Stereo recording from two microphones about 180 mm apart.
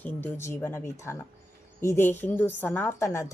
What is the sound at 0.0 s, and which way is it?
A woman's voice, 10° left (ahead or behind).